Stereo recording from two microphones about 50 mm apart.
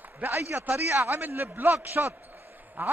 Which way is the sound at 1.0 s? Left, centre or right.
Right.